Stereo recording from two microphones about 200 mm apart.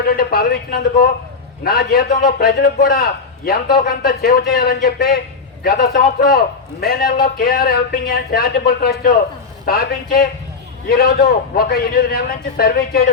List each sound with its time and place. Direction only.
0.2 s a man's voice: 50° left (ahead or behind)